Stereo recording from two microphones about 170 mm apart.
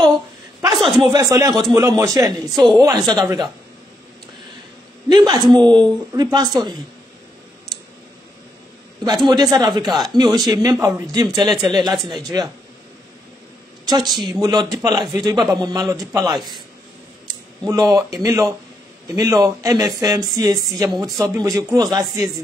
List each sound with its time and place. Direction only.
0.7 s a sound: centre (ahead or behind)
1.0 s speech: 20° right (ahead or behind)
5.1 s speech: 25° right (ahead or behind)
9.0 s speech: 25° right (ahead or behind)
13.8 s a woman's voice: 25° right (ahead or behind)
15.3 s a man's voice: centre (ahead or behind)
15.6 s speech: 25° right (ahead or behind)
16.3 s a man's voice: centre (ahead or behind)
17.6 s speech: 20° right (ahead or behind)